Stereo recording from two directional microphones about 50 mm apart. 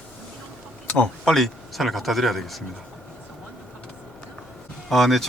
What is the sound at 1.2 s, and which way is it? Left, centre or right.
Speech, centre.